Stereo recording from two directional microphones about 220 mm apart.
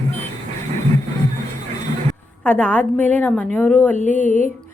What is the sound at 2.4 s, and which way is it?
A woman's voice, 5° left (ahead or behind).